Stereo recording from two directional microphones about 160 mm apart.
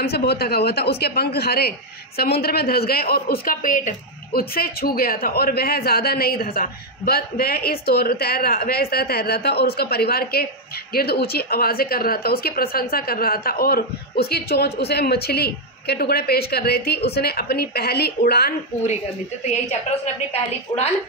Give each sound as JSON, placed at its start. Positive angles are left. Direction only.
{"t": 0.0, "sound": "a man's voice", "side_deg": 80}
{"t": 18.9, "sound": "speech", "side_deg": 45}